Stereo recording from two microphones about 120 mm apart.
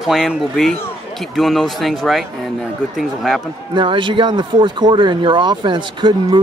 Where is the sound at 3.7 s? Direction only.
40° right (ahead or behind).